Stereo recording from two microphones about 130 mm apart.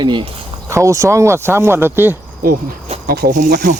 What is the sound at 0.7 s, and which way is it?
Speech, 25° right (ahead or behind).